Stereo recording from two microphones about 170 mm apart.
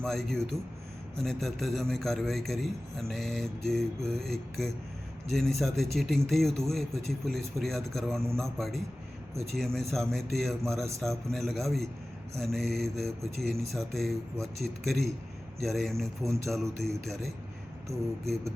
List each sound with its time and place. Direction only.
0.0 s a man's voice: centre (ahead or behind)
16.2 s speech: 15° right (ahead or behind)
16.5 s a man's voice: centre (ahead or behind)